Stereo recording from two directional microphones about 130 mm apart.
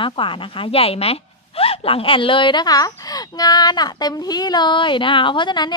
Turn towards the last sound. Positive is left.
turn(degrees=35)  # may be behind; listen again after turning